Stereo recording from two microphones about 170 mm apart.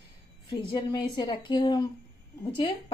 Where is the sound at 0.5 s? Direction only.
25° left (ahead or behind).